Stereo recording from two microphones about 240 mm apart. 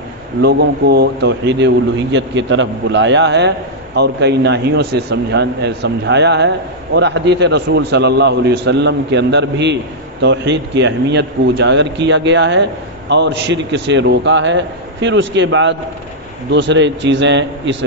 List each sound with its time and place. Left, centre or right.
0.4 s speech: right